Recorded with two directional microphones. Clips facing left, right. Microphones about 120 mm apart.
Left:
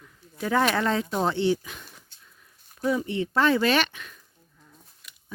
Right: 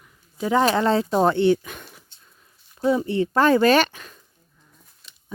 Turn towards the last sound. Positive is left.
turn(degrees=-30)  # may be behind; listen again after turning